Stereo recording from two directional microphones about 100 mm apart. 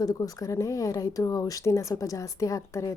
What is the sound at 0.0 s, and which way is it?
Speech, 35° left (ahead or behind).